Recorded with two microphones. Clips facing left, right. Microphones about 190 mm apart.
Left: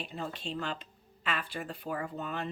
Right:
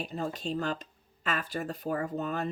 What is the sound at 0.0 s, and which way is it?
Speech, 40° right (ahead or behind).